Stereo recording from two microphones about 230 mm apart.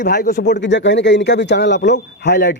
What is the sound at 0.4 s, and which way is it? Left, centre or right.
A man's voice, left.